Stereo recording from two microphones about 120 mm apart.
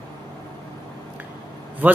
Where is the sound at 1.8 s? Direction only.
15° right (ahead or behind).